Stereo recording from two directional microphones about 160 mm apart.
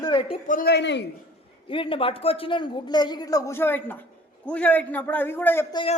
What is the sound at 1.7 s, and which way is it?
A man's voice, 35° left (ahead or behind).